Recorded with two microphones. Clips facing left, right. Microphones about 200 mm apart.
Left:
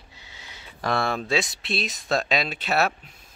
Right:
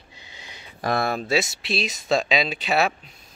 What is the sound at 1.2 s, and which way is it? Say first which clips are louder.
Speech: right 2 dB; 5° right (ahead or behind).